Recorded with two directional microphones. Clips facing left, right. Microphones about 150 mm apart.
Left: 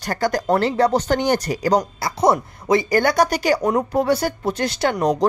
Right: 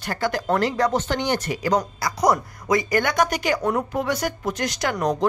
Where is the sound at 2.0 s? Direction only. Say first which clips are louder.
Left 3 dB; 25° left (ahead or behind).